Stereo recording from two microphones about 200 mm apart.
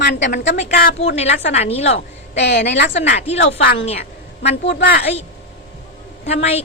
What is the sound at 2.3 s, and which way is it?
Speech, 60° left (ahead or behind).